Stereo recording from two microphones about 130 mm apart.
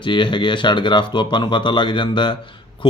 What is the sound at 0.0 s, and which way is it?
Speech, 40° left (ahead or behind).